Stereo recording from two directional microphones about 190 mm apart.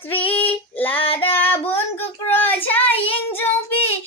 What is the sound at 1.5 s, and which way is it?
Child singing, 10° left (ahead or behind).